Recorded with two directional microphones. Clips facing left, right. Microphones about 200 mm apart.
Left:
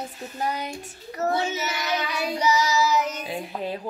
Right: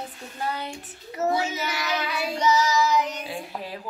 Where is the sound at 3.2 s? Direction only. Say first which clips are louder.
Left 4 dB; 20° left (ahead or behind).